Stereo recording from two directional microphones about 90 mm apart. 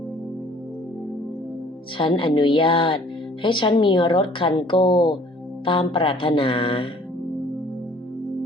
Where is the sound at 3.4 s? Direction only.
65° left (ahead or behind).